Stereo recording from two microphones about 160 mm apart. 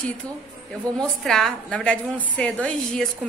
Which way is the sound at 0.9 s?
10° left (ahead or behind).